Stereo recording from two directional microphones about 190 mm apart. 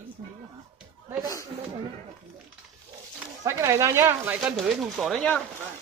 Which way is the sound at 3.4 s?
15° right (ahead or behind).